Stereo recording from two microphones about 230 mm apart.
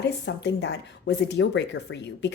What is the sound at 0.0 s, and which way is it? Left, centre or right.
Speech, left.